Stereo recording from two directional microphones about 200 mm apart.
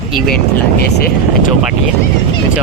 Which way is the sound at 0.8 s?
50° left (ahead or behind).